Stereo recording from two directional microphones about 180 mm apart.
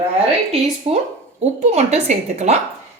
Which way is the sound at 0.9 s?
35° right (ahead or behind).